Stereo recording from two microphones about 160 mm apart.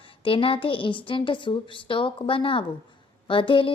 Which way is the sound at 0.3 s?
35° left (ahead or behind).